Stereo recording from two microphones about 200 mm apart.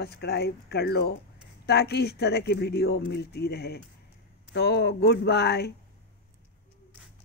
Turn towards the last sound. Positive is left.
turn(degrees=55)  # may be behind; listen again after turning